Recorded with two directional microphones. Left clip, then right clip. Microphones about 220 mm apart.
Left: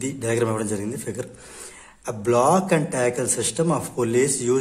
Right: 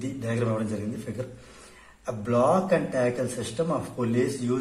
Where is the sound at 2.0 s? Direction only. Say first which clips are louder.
Left 4 dB; 45° left (ahead or behind).